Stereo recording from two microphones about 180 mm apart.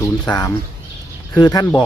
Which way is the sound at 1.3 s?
20° left (ahead or behind).